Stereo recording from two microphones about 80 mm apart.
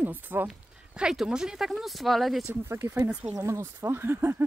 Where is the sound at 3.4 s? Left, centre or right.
Right.